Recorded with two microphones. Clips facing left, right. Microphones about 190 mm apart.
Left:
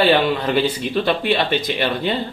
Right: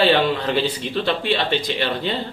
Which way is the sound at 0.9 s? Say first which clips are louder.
Left 4 dB; 10° left (ahead or behind).